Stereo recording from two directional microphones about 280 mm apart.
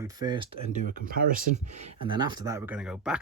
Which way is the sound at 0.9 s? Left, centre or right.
Right.